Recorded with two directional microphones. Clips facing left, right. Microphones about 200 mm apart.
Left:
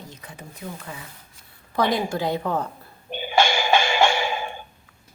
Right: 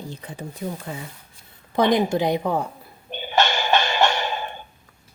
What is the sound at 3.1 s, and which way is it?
Music, 10° left (ahead or behind).